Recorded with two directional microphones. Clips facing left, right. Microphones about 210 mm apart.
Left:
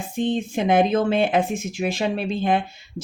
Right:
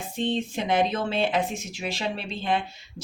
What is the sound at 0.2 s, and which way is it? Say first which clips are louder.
Speech: left 4 dB; 50° left (ahead or behind).